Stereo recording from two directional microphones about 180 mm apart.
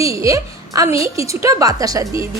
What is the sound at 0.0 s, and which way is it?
A woman's voice, 15° right (ahead or behind).